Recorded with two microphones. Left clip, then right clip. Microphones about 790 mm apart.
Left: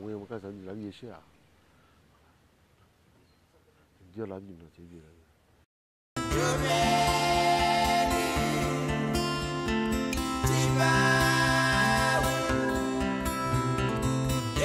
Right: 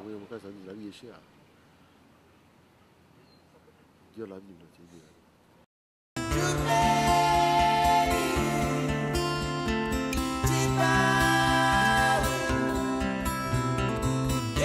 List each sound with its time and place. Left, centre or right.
0.3 s speech: left
4.2 s speech: left
6.1 s music: centre